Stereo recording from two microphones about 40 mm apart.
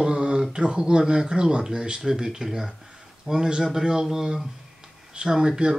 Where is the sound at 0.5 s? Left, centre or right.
Right.